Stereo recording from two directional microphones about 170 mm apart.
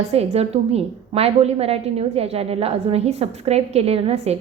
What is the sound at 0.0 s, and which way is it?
A woman's voice, 40° right (ahead or behind).